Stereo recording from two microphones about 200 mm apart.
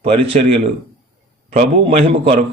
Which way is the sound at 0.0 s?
30° right (ahead or behind).